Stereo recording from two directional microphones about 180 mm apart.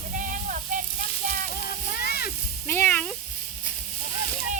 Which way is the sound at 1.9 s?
60° left (ahead or behind).